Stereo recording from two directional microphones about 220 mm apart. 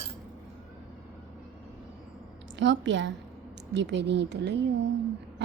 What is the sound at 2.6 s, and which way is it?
A woman's voice, 55° right (ahead or behind).